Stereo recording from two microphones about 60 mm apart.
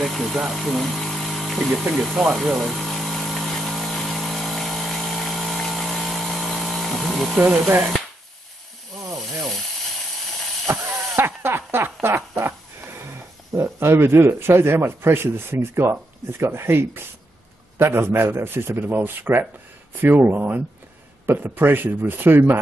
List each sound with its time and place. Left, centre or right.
0.0 s power tool: centre
0.6 s a sound: centre
1.8 s speech: centre
2.5 s power tool: centre
10.7 s a sound: right
17.7 s a man's voice: right